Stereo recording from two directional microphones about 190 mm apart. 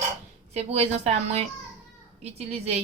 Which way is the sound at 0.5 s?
35° right (ahead or behind).